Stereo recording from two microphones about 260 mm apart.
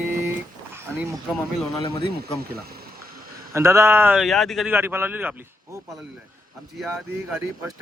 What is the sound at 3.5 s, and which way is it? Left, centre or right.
Speech, centre.